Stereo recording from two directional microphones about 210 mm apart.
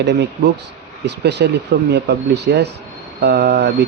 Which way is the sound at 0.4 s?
55° right (ahead or behind).